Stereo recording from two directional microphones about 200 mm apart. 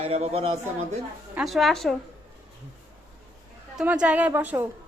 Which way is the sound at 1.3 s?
Centre (ahead or behind).